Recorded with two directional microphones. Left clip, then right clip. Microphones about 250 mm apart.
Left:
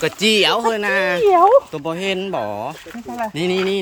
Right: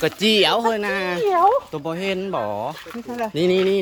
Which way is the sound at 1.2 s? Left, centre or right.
Left.